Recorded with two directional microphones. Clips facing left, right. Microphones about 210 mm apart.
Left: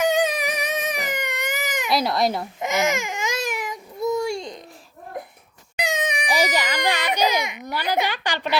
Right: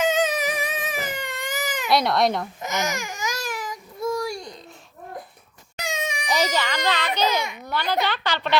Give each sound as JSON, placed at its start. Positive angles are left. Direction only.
{"t": 0.0, "sound": "music", "side_deg": 60}
{"t": 0.9, "sound": "baby cry", "side_deg": 15}
{"t": 1.9, "sound": "speech", "side_deg": 0}
{"t": 2.9, "sound": "baby cry", "side_deg": 25}
{"t": 5.8, "sound": "speech", "side_deg": 15}